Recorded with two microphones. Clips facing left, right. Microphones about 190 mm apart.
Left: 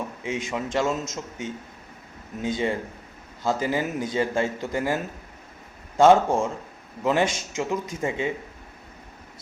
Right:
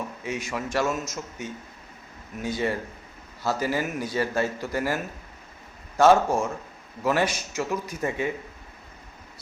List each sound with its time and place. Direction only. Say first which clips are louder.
0.2 s a man's voice: left 3 dB; 20° left (ahead or behind)
6.0 s a man's voice: left 2 dB; 20° left (ahead or behind)